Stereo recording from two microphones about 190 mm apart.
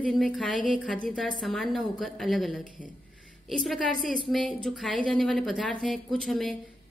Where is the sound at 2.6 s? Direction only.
45° left (ahead or behind).